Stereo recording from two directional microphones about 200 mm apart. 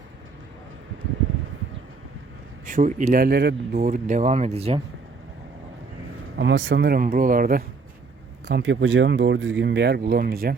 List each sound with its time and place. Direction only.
2.6 s speech: 40° right (ahead or behind)
6.3 s speech: 65° right (ahead or behind)
7.0 s speech: 45° right (ahead or behind)
8.4 s speech: 65° right (ahead or behind); by 10.5 s 50° right (ahead or behind)